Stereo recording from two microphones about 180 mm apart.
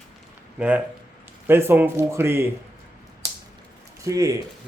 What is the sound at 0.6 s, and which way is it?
A man's voice, 5° right (ahead or behind).